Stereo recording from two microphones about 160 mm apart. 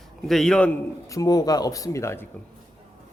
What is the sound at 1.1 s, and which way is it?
Speech, 20° left (ahead or behind).